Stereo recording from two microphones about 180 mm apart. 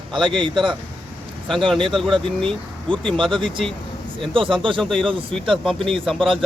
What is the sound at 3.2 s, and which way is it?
Speech, 25° right (ahead or behind).